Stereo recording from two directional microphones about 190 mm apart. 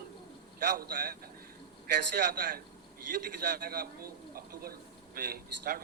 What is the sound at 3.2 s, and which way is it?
Speech, 50° right (ahead or behind).